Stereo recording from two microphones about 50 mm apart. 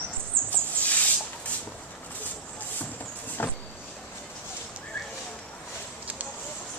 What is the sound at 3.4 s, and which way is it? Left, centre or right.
Vehicle, left.